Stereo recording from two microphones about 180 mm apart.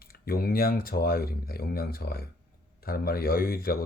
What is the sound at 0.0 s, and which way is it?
Speech, 55° left (ahead or behind).